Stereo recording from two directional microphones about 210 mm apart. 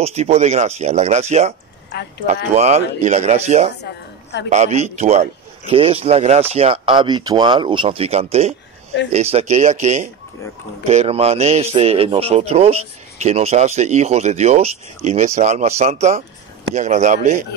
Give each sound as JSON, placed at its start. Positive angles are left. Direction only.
{"t": 0.0, "sound": "speech", "side_deg": -30}